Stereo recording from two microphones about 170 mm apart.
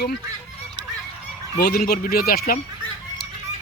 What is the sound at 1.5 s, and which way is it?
Speech, 65° left (ahead or behind).